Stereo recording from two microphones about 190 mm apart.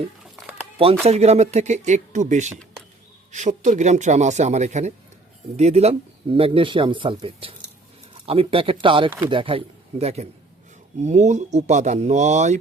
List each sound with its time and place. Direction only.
1.0 s speech: 35° right (ahead or behind)